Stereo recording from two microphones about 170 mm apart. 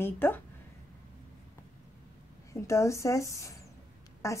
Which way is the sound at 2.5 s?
15° left (ahead or behind).